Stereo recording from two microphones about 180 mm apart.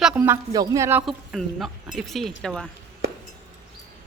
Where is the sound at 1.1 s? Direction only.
Centre (ahead or behind).